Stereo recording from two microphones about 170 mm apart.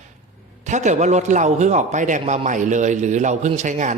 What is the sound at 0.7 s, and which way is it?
A man's voice, 45° right (ahead or behind).